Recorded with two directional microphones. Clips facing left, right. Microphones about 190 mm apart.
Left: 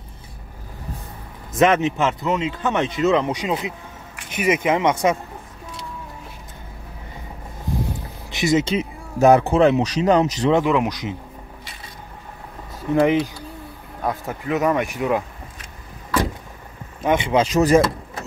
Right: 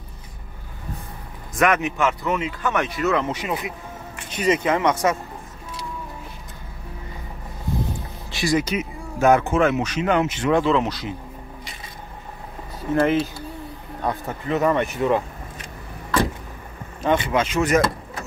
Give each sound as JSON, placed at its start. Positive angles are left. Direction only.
{"t": 1.5, "sound": "a man's voice", "side_deg": 25}
{"t": 8.3, "sound": "speech", "side_deg": 20}
{"t": 10.5, "sound": "speech", "side_deg": 15}
{"t": 13.0, "sound": "speech", "side_deg": 15}
{"t": 14.0, "sound": "speech", "side_deg": 5}
{"t": 17.0, "sound": "a man's voice", "side_deg": 20}